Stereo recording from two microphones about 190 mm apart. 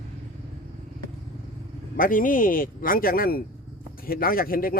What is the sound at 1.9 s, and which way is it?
Speech, 45° left (ahead or behind).